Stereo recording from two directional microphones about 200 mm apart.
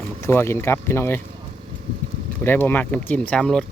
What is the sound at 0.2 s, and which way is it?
Speech, 15° left (ahead or behind).